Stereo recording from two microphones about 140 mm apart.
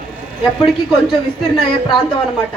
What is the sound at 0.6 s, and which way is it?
Speech, centre (ahead or behind).